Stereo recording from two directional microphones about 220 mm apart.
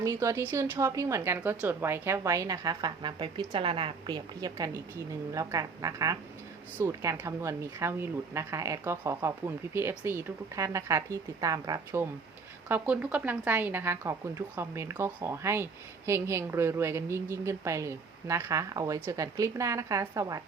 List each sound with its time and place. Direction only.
0.0 s speech: 15° right (ahead or behind)